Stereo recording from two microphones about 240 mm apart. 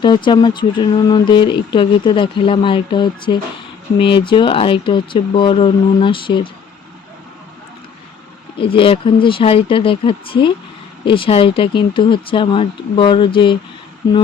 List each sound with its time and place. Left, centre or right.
0.0 s speech: centre
8.5 s speech: left